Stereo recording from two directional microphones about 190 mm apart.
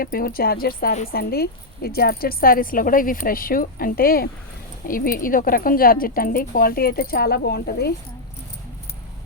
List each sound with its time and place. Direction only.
0.0 s a woman's voice: 50° left (ahead or behind)